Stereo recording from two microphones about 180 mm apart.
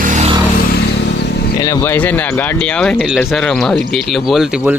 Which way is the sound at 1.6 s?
20° left (ahead or behind).